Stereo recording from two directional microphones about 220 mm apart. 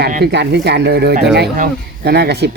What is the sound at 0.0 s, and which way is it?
Speech, 45° right (ahead or behind).